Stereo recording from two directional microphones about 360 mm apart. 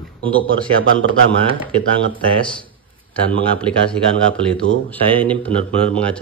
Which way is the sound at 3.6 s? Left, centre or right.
Centre.